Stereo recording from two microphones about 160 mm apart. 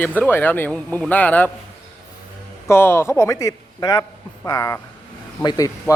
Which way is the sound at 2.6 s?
15° left (ahead or behind).